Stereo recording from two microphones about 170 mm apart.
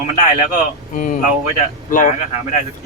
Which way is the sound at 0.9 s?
50° left (ahead or behind).